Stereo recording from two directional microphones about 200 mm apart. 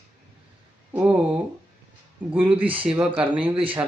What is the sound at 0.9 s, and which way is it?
A man's voice, 10° right (ahead or behind).